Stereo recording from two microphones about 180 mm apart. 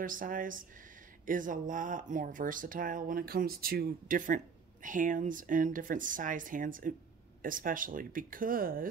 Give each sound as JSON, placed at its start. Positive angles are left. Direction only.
{"t": 0.0, "sound": "speech", "side_deg": -50}